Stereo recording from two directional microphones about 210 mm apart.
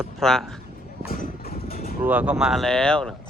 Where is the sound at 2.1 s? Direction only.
5° right (ahead or behind).